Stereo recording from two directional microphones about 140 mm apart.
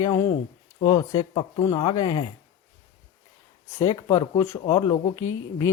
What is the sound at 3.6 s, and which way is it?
Speech, 25° left (ahead or behind).